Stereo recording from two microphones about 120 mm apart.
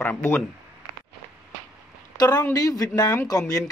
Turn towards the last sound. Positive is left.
turn(degrees=30)  # may be behind; listen again after turning